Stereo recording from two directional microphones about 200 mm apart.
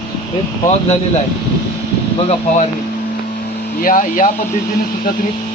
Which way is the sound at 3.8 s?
40° left (ahead or behind).